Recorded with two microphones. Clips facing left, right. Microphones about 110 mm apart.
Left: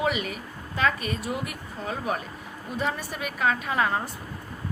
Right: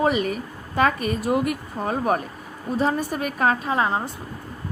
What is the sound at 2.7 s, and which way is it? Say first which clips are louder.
A woman's voice: right 7 dB; 35° right (ahead or behind).